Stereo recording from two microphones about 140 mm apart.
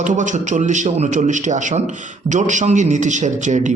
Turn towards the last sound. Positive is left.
turn(degrees=-60)  # may be behind; listen again after turning